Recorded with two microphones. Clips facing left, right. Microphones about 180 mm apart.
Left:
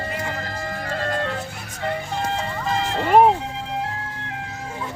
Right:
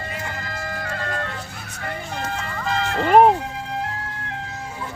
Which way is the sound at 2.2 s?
25° left (ahead or behind).